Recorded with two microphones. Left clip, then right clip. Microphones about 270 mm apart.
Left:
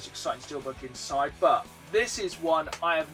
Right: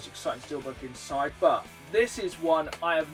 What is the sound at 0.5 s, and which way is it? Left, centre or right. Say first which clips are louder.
Speech: even; centre.